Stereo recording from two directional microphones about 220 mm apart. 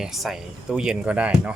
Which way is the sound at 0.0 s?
Centre (ahead or behind).